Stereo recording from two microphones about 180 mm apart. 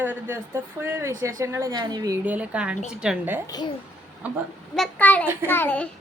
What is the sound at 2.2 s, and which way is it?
A woman's voice, 10° right (ahead or behind).